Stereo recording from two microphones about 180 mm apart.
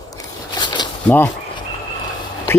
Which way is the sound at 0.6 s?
25° left (ahead or behind).